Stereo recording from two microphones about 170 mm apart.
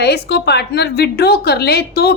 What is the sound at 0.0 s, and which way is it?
A woman's voice, 75° left (ahead or behind).